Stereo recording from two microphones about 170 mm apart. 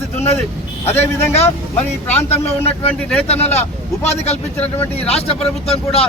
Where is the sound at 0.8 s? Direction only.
10° left (ahead or behind).